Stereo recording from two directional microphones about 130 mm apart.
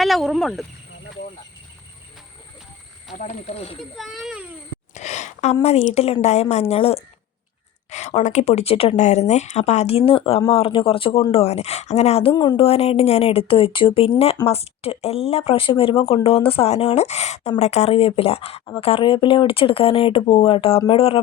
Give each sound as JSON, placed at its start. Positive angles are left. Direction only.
{"t": 0.0, "sound": "speech", "side_deg": 0}
{"t": 3.1, "sound": "speech", "side_deg": 65}
{"t": 3.9, "sound": "a child's voice", "side_deg": 0}
{"t": 4.9, "sound": "a sound", "side_deg": 65}
{"t": 5.6, "sound": "speech", "side_deg": 55}
{"t": 7.9, "sound": "speech", "side_deg": 60}
{"t": 9.0, "sound": "speech", "side_deg": 60}
{"t": 12.3, "sound": "a woman's voice", "side_deg": 35}
{"t": 12.6, "sound": "speech", "side_deg": 50}